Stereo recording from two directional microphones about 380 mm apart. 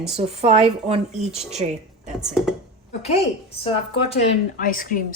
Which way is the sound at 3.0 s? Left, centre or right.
Centre.